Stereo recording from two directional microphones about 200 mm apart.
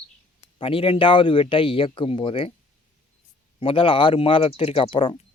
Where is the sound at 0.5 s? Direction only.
25° left (ahead or behind).